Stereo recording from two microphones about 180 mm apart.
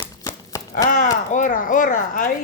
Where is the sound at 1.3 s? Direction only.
45° left (ahead or behind).